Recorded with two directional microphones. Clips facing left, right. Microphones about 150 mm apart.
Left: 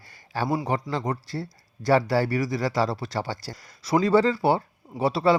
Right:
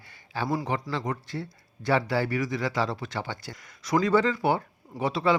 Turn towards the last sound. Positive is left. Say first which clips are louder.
# left 4 dB
turn(degrees=35)  # may be behind; listen again after turning